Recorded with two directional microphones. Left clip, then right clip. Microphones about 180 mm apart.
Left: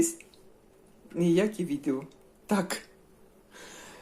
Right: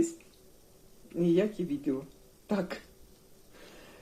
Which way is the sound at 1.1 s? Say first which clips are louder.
Left 2 dB; 20° left (ahead or behind).